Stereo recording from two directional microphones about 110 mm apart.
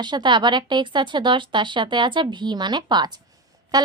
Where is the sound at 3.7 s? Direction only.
40° right (ahead or behind).